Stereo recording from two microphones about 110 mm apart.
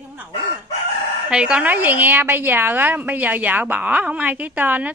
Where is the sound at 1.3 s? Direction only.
10° right (ahead or behind).